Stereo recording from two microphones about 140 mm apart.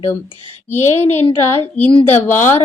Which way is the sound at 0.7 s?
15° left (ahead or behind).